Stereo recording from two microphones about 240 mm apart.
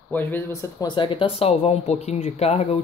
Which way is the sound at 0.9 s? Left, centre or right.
Left.